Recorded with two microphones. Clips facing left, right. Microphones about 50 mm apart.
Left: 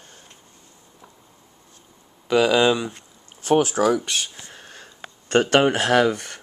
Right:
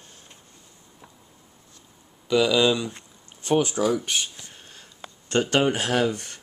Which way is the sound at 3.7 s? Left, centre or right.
Left.